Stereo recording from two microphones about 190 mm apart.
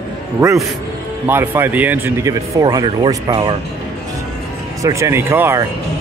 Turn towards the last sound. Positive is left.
turn(degrees=-15)  # may be behind; listen again after turning